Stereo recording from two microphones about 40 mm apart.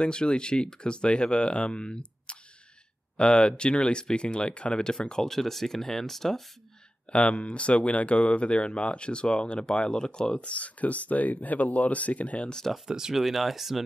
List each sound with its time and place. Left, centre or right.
0.0 s speech: left
7.1 s speech: left
10.5 s speech: left
12.4 s speech: centre
12.7 s speech: centre